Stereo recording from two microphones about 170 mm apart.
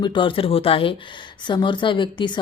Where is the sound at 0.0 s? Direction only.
30° left (ahead or behind).